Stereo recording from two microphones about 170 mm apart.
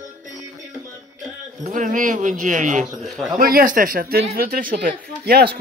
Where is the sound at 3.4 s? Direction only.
60° right (ahead or behind).